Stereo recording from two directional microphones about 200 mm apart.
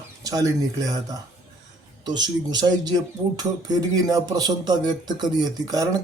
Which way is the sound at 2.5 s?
20° right (ahead or behind).